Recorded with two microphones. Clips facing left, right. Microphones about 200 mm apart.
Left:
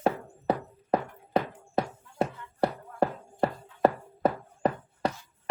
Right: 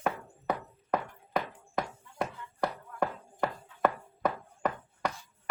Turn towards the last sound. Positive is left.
turn(degrees=30)  # may be behind; listen again after turning